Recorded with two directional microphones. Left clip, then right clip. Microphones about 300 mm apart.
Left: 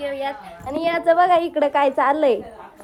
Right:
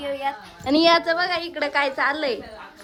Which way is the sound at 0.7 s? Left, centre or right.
Centre.